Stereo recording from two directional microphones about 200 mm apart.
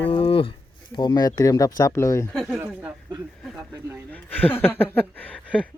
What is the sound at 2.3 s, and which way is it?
Speech, centre (ahead or behind).